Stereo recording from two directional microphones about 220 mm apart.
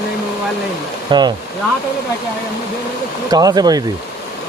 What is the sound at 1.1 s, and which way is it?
Speech, 20° right (ahead or behind).